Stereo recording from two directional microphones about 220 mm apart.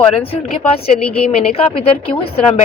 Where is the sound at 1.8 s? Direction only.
25° left (ahead or behind).